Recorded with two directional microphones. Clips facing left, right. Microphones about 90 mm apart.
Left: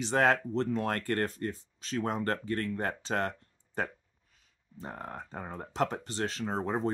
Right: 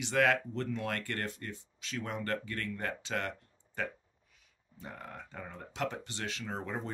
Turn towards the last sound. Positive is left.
turn(degrees=35)  # may be behind; listen again after turning